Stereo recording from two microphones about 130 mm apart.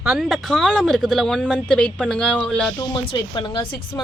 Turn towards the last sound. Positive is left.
turn(degrees=35)  # may be behind; listen again after turning